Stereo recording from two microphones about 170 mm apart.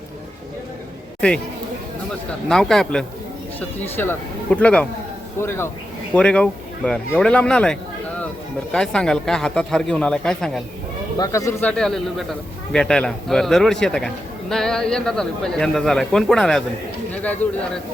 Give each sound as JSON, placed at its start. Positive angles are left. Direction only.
{"t": 2.5, "sound": "a man's voice", "side_deg": 0}
{"t": 11.2, "sound": "speech", "side_deg": 20}
{"t": 11.7, "sound": "a man's voice", "side_deg": 5}